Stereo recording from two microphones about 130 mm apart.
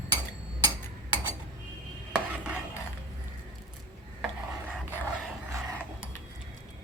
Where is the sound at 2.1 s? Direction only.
10° right (ahead or behind).